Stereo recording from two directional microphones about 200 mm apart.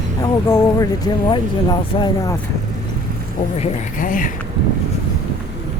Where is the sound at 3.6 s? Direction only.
40° left (ahead or behind).